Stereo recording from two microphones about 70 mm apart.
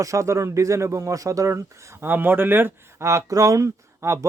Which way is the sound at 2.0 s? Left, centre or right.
Right.